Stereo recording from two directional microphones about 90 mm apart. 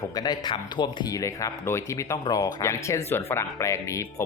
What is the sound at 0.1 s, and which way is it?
Speech, 45° left (ahead or behind).